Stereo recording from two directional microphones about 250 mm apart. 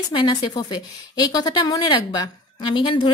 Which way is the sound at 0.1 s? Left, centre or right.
Centre.